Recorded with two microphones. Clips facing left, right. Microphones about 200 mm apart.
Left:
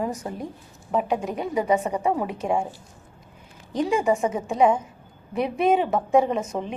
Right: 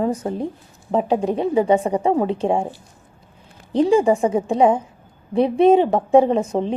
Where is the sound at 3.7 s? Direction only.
30° right (ahead or behind).